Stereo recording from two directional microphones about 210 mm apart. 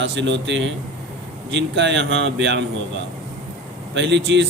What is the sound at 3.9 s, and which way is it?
Speech, 60° right (ahead or behind).